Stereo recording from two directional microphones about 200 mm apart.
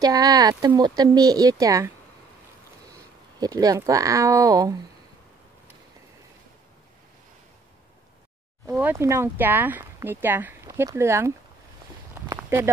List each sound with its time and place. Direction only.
0.0 s speech: 20° right (ahead or behind)
3.3 s speech: 20° right (ahead or behind)
8.6 s speech: 5° right (ahead or behind)
12.4 s a sound: 10° right (ahead or behind)